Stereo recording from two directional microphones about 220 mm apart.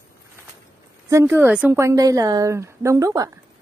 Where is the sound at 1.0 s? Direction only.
10° right (ahead or behind).